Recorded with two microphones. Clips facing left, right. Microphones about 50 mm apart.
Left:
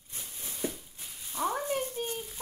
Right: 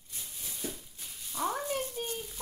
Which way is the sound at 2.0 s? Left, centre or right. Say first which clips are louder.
Left 2 dB; centre.